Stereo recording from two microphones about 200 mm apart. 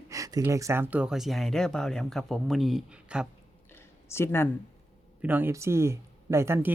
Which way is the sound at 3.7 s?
10° left (ahead or behind).